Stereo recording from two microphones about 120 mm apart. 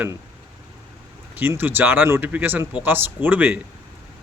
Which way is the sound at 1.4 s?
15° right (ahead or behind).